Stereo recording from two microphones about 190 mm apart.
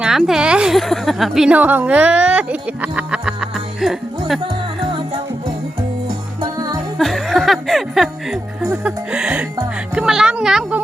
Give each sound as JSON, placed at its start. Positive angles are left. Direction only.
{"t": 0.0, "sound": "a woman's voice", "side_deg": -5}
{"t": 7.0, "sound": "music", "side_deg": 0}